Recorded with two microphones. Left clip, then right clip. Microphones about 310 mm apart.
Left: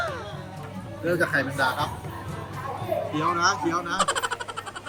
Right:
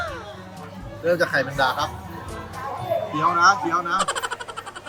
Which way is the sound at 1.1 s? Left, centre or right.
Right.